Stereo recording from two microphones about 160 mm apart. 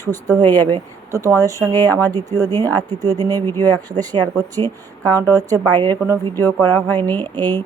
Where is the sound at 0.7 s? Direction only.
20° right (ahead or behind).